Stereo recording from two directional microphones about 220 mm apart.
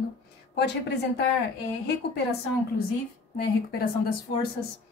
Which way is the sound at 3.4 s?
45° left (ahead or behind).